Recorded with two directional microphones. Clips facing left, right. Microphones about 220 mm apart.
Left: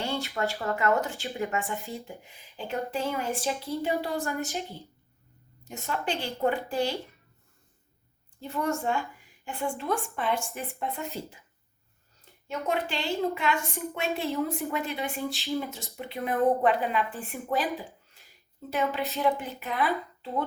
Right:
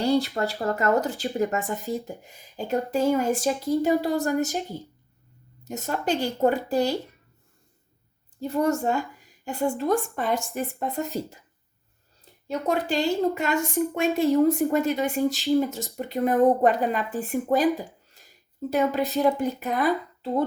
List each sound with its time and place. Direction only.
0.0 s speech: 40° right (ahead or behind)
8.4 s a woman's voice: 40° right (ahead or behind)
17.7 s a sound: 40° right (ahead or behind)
19.1 s speech: 40° right (ahead or behind)